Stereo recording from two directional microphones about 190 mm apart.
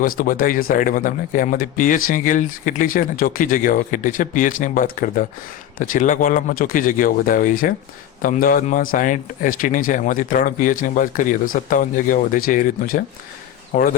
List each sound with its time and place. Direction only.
0.0 s speech: 45° left (ahead or behind)